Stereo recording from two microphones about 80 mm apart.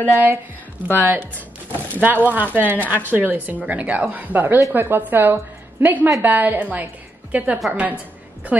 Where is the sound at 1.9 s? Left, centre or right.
Right.